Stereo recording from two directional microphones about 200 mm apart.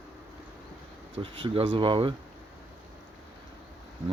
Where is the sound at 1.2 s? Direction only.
25° right (ahead or behind).